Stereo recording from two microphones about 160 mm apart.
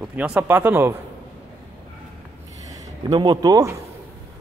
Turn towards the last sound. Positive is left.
turn(degrees=-20)  # may be behind; listen again after turning